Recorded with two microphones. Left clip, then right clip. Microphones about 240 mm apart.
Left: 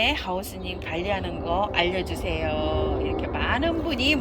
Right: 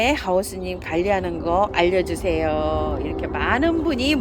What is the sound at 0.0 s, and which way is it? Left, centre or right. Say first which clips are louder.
Speech: right 4 dB; right.